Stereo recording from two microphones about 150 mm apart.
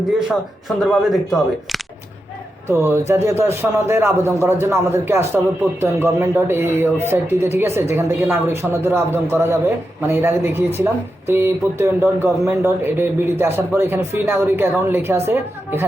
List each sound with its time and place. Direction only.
0.8 s speech: centre (ahead or behind)
2.6 s a man's voice: 15° right (ahead or behind)